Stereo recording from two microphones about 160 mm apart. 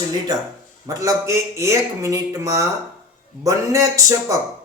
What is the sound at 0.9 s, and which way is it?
Speech, 20° right (ahead or behind).